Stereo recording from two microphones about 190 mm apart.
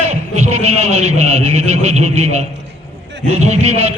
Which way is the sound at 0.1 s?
35° right (ahead or behind).